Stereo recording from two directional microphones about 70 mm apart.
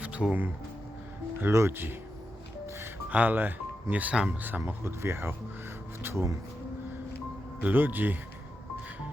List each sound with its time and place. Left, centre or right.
0.0 s speech: centre
1.4 s speech: right
2.6 s music: right
3.1 s speech: right
6.0 s music: right
7.6 s speech: right